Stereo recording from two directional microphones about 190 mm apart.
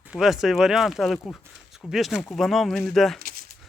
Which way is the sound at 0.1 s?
Centre (ahead or behind).